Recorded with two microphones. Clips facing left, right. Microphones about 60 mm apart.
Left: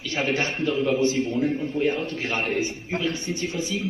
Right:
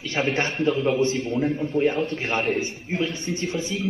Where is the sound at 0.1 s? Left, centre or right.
Right.